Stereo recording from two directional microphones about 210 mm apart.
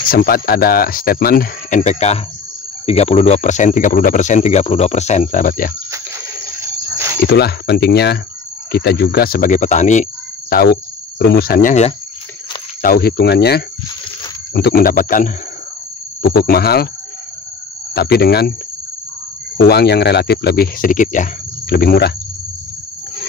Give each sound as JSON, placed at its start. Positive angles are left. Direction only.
{"t": 0.1, "sound": "speech", "side_deg": 45}
{"t": 7.2, "sound": "speech", "side_deg": 50}
{"t": 10.5, "sound": "cricket", "side_deg": 50}
{"t": 12.8, "sound": "speech", "side_deg": 45}
{"t": 17.9, "sound": "speech", "side_deg": 50}
{"t": 19.5, "sound": "speech", "side_deg": 50}